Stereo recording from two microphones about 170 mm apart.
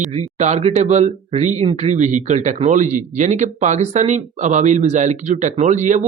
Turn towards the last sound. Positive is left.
turn(degrees=-45)  # may be behind; listen again after turning